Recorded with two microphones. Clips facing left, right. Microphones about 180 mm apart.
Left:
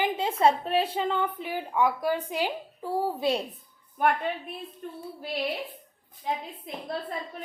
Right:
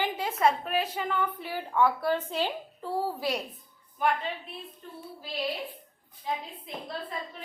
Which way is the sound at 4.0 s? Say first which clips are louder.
Left 3 dB; 55° left (ahead or behind).